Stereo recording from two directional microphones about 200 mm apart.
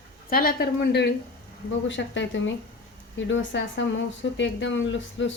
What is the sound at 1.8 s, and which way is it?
Speech, 65° left (ahead or behind).